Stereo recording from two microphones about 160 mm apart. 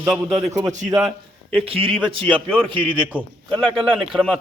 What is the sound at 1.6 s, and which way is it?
Speech, 35° right (ahead or behind).